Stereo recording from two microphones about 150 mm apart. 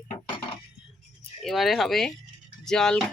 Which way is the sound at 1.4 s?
Centre (ahead or behind).